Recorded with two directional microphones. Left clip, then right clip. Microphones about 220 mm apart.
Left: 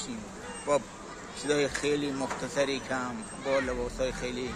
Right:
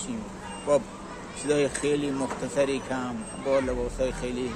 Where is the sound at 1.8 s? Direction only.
40° right (ahead or behind).